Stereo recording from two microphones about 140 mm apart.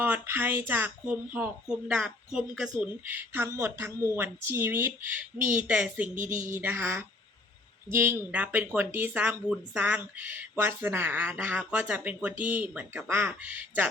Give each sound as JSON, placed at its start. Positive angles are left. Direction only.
{"t": 0.0, "sound": "speech", "side_deg": -15}
{"t": 2.8, "sound": "speech", "side_deg": -15}